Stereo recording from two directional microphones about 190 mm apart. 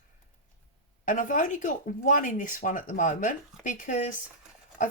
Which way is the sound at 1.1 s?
45° left (ahead or behind).